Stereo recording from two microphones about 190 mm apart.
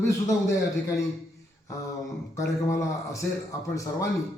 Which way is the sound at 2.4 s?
15° left (ahead or behind).